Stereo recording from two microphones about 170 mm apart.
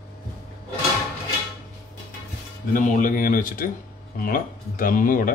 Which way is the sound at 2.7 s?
50° left (ahead or behind).